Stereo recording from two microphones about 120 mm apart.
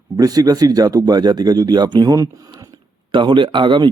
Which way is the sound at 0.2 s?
30° right (ahead or behind).